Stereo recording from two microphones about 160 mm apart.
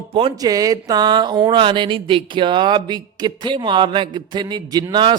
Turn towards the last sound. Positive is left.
turn(degrees=-25)  # may be behind; listen again after turning